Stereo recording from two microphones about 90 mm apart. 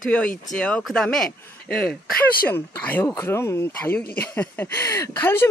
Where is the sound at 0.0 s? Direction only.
10° left (ahead or behind).